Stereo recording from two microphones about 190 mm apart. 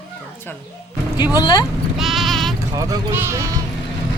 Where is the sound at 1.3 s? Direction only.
20° left (ahead or behind).